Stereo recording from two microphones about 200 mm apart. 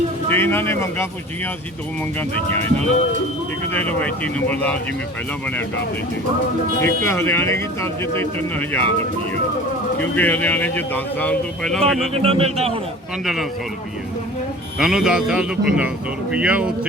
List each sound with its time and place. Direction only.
0.3 s speech: 10° left (ahead or behind)
3.7 s speech: 5° left (ahead or behind)
6.8 s speech: 15° left (ahead or behind)
10.0 s speech: 10° left (ahead or behind)
12.1 s speech: 30° right (ahead or behind)
13.2 s speech: centre (ahead or behind)
14.8 s speech: 5° right (ahead or behind)